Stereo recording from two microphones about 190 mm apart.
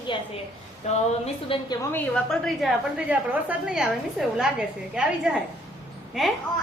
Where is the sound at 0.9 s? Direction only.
35° left (ahead or behind).